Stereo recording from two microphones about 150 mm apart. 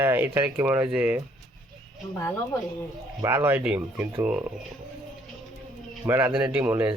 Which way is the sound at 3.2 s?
15° right (ahead or behind).